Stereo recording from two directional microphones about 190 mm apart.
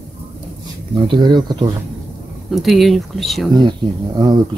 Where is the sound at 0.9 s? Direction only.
25° right (ahead or behind).